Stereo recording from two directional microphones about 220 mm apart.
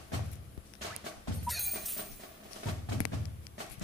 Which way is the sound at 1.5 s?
Centre (ahead or behind).